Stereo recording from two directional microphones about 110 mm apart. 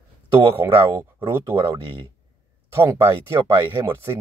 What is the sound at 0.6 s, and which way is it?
Speech, 20° right (ahead or behind).